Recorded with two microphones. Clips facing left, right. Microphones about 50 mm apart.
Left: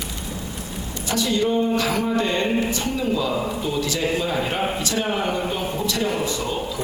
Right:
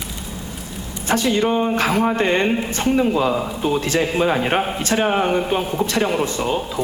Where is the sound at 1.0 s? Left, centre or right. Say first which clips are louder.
Right 4 dB; right.